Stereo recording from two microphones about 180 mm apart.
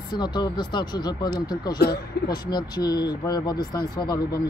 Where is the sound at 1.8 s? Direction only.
65° left (ahead or behind).